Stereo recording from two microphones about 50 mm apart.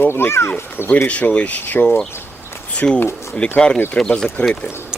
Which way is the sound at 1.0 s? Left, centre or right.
Left.